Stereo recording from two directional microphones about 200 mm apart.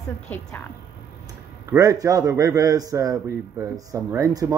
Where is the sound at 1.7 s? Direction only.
15° right (ahead or behind).